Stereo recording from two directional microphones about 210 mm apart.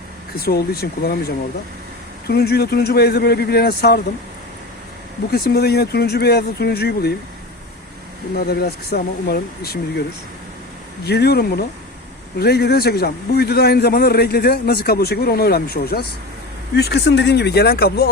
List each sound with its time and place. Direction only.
0.3 s a man's voice: 50° left (ahead or behind)
5.3 s a man's voice: 50° left (ahead or behind)
8.4 s a man's voice: 50° left (ahead or behind)
11.0 s a man's voice: 50° left (ahead or behind)